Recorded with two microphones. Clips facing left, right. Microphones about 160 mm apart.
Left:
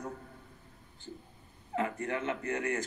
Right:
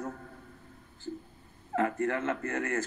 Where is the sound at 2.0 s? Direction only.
15° left (ahead or behind).